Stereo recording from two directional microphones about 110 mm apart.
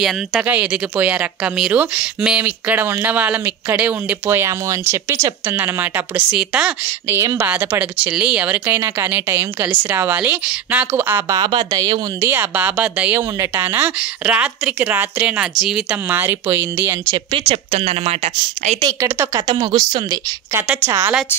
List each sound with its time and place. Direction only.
0.0 s speech: 5° right (ahead or behind)
0.5 s speech: 15° right (ahead or behind)
11.2 s a woman's voice: 40° right (ahead or behind)
12.2 s speech: 20° right (ahead or behind)
17.3 s speech: 60° right (ahead or behind)
18.8 s a woman's voice: 35° right (ahead or behind)
19.4 s a woman's voice: 45° right (ahead or behind)
20.8 s a woman's voice: 20° right (ahead or behind)